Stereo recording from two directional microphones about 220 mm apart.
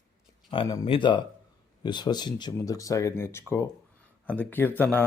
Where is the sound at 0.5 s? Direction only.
20° left (ahead or behind).